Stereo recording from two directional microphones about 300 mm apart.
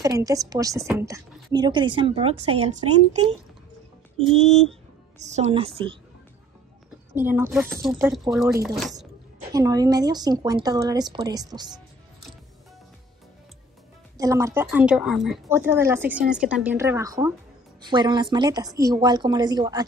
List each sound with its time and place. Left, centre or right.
0.0 s speech: centre
4.3 s a woman's voice: right
7.2 s speech: centre
9.5 s speech: centre
14.1 s speech: centre